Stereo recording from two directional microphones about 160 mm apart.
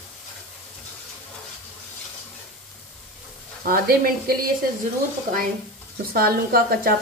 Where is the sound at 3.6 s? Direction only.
65° right (ahead or behind).